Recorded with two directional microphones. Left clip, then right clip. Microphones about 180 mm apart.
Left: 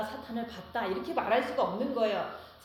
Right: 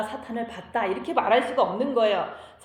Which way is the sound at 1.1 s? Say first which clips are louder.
Right 8 dB; 35° right (ahead or behind).